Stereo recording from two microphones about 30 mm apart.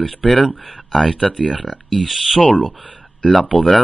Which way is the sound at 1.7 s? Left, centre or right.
Centre.